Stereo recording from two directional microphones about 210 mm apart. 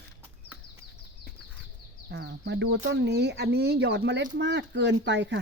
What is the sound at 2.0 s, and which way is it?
Speech, 55° right (ahead or behind).